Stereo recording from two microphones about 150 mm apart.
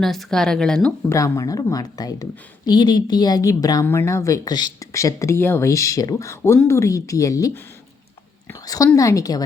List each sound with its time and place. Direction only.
0.0 s speech: centre (ahead or behind)
1.1 s speech: 20° left (ahead or behind)
8.4 s a sound: 25° left (ahead or behind)
9.0 s speech: 20° left (ahead or behind)